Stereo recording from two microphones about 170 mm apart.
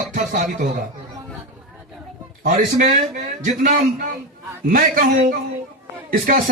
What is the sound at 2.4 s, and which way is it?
A man's voice, 50° right (ahead or behind).